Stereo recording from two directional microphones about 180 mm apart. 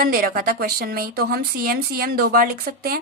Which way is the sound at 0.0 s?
55° right (ahead or behind).